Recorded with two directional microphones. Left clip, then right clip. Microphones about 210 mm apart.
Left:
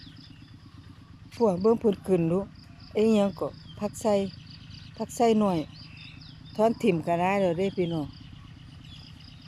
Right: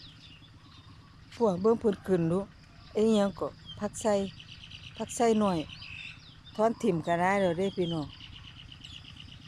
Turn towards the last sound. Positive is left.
turn(degrees=5)  # may be behind; listen again after turning